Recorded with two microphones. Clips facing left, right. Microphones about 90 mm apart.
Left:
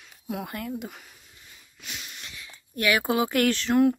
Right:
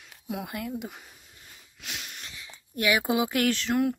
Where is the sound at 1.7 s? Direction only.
75° right (ahead or behind).